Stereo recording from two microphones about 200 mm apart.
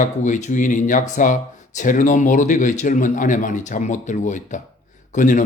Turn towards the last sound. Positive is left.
turn(degrees=40)  # may be behind; listen again after turning